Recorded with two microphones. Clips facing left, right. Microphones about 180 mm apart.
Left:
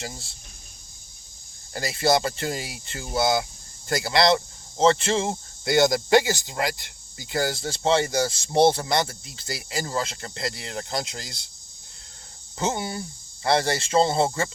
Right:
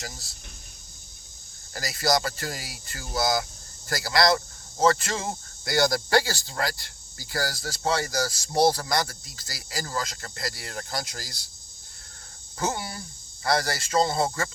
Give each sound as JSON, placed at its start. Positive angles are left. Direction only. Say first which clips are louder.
{"t": 0.0, "sound": "speech", "louder": "left 4 dB", "side_deg": 30}
{"t": 1.7, "sound": "speech", "louder": "left 3 dB", "side_deg": 25}
{"t": 12.5, "sound": "speech", "louder": "left 3 dB", "side_deg": 25}